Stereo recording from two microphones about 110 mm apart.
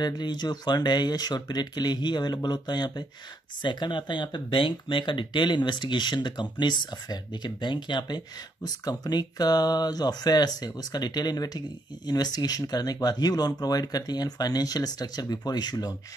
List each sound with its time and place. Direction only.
0.0 s speech: 40° left (ahead or behind)